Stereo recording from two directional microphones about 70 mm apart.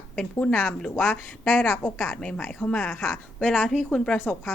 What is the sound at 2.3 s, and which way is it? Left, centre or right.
Speech, centre.